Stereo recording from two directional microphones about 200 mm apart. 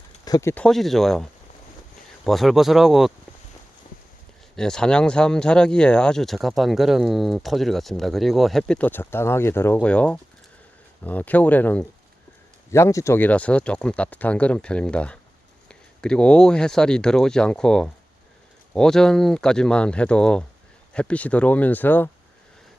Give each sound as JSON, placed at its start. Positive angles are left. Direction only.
{"t": 0.3, "sound": "speech", "side_deg": 20}
{"t": 0.5, "sound": "speech", "side_deg": 5}
{"t": 4.5, "sound": "speech", "side_deg": 5}